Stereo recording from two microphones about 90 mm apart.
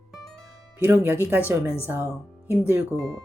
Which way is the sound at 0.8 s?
20° right (ahead or behind).